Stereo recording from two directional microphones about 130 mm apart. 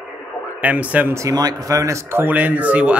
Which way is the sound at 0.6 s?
10° right (ahead or behind).